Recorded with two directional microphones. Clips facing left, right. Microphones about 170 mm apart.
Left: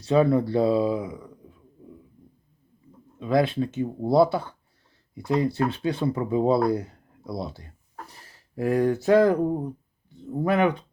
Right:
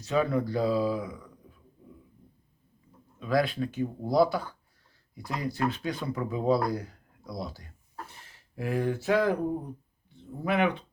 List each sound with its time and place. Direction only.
0.0 s speech: 30° left (ahead or behind)
3.2 s speech: 25° left (ahead or behind)
8.5 s speech: 40° left (ahead or behind)
10.4 s speech: 40° left (ahead or behind)